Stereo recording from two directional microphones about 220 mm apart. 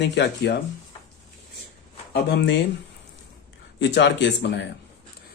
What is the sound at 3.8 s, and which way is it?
Speech, 50° left (ahead or behind).